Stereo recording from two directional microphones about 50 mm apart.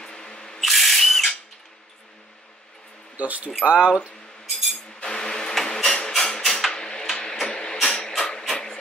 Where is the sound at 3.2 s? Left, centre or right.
Right.